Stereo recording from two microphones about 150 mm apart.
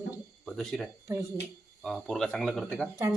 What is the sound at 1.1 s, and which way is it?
Speech, 20° right (ahead or behind).